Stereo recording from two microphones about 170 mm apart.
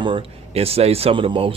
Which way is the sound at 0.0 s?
30° right (ahead or behind).